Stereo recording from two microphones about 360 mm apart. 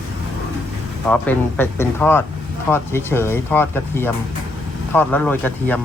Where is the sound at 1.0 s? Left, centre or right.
Centre.